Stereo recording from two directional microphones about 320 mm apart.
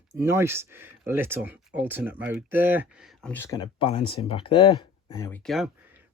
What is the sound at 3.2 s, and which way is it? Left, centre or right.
Speech, centre.